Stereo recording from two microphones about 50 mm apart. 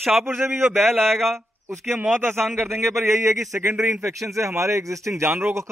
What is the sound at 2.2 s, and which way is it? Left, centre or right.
Speech, right.